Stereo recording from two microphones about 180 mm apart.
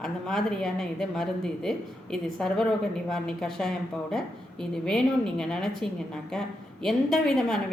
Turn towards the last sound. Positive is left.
turn(degrees=0)  # may be behind; listen again after turning